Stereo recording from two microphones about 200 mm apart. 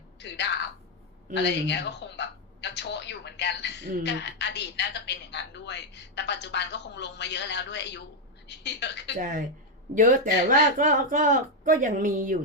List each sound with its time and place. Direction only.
0.2 s a sound: 60° left (ahead or behind)
4.0 s a woman's voice: 60° left (ahead or behind)
9.1 s speech: 40° right (ahead or behind)